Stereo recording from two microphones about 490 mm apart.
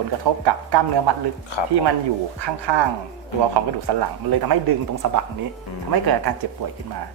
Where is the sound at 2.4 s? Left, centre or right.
Right.